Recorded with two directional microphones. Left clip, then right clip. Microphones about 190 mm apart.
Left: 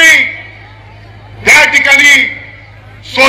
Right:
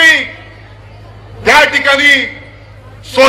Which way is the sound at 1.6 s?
15° right (ahead or behind).